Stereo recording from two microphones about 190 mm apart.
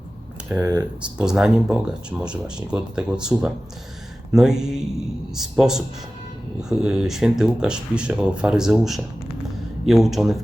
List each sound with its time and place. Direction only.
0.6 s speech: 15° right (ahead or behind)
1.2 s speech: 5° right (ahead or behind)